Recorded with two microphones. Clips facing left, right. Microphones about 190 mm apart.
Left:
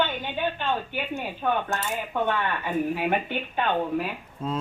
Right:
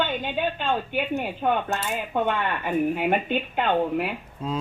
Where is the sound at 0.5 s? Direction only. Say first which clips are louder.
Right 3 dB; 15° right (ahead or behind).